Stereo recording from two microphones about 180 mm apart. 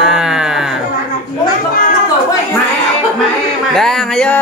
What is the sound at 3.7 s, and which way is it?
Speech, centre (ahead or behind).